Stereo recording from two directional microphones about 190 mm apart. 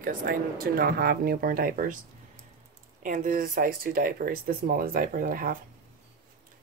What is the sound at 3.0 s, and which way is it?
Speech, 45° right (ahead or behind).